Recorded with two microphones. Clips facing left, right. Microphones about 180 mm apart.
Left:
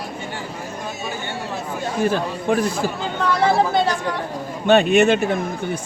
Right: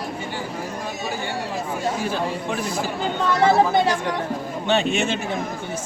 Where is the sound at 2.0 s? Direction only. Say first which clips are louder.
Left 4 dB; 55° left (ahead or behind).